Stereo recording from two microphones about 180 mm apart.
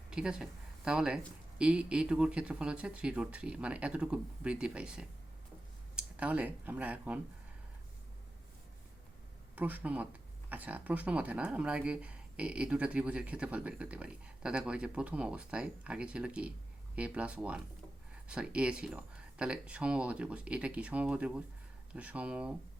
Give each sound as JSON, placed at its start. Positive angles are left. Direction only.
{"t": 0.1, "sound": "speech", "side_deg": -5}
{"t": 9.6, "sound": "speech", "side_deg": -10}